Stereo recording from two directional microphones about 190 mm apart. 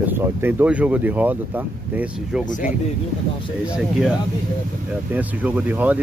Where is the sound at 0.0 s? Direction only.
10° right (ahead or behind).